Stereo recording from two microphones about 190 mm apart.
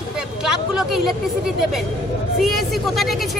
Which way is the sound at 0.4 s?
Centre (ahead or behind).